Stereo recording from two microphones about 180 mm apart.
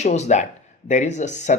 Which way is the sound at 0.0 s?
40° left (ahead or behind).